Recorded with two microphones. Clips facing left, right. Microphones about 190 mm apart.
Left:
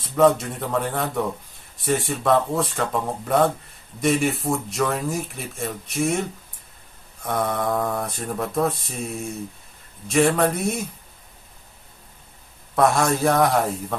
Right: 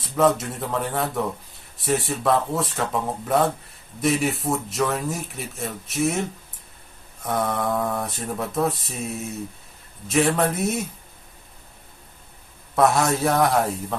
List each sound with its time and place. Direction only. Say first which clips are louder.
0.0 s speech: left 2 dB; centre (ahead or behind)
12.7 s speech: even; centre (ahead or behind)